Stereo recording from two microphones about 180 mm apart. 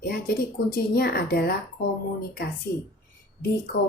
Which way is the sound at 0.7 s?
55° left (ahead or behind).